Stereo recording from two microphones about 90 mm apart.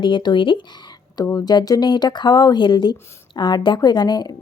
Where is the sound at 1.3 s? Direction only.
50° left (ahead or behind).